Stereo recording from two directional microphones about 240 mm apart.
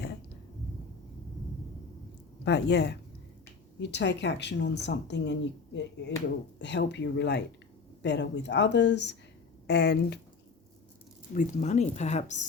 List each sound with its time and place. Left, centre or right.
2.4 s speech: left
11.3 s speech: left